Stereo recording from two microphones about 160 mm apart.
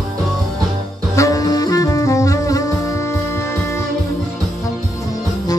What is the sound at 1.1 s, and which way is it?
Music, 20° left (ahead or behind).